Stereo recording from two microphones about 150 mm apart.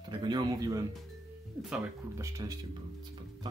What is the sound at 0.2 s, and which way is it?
Speech, 25° right (ahead or behind).